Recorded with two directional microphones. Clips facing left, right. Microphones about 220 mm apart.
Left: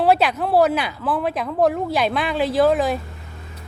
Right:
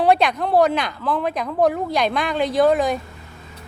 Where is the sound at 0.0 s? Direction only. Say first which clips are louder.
Even; 5° left (ahead or behind).